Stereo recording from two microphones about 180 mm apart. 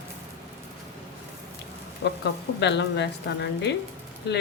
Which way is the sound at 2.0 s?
65° left (ahead or behind).